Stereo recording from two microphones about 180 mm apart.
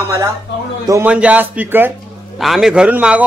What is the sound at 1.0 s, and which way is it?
A man's voice, 5° right (ahead or behind).